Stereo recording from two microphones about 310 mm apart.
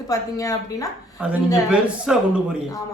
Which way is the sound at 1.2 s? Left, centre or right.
Centre.